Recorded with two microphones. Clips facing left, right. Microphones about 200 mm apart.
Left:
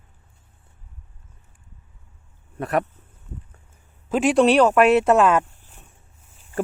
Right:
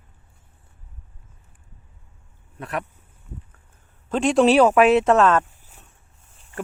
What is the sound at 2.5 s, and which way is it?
Speech, 45° left (ahead or behind).